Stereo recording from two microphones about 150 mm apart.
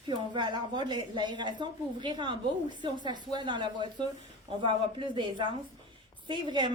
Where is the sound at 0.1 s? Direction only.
30° right (ahead or behind).